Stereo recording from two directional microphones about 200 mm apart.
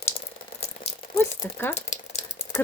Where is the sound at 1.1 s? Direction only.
10° left (ahead or behind).